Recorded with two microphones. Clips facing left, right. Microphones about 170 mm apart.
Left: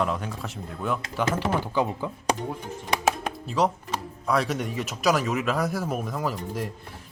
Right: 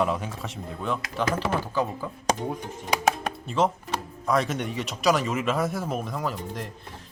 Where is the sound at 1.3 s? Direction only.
15° left (ahead or behind).